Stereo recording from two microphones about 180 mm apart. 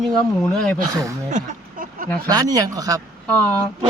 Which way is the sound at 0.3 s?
5° left (ahead or behind).